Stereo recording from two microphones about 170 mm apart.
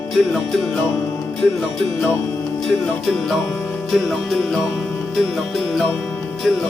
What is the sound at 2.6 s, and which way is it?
Speech, centre (ahead or behind).